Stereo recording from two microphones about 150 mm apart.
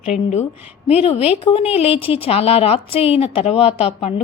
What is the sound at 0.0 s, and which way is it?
A woman's voice, 50° left (ahead or behind).